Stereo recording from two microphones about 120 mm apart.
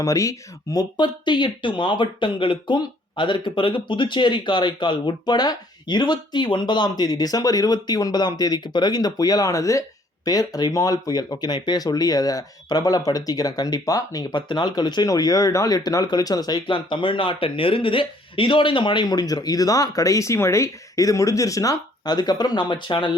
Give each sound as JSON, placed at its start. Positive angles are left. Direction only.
{"t": 0.0, "sound": "speech", "side_deg": 25}